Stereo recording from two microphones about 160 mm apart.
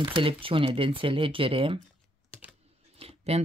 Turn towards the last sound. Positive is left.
turn(degrees=-40)  # may be behind; listen again after turning